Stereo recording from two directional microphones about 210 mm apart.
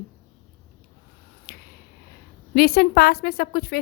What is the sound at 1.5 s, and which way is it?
Finger snapping, 50° left (ahead or behind).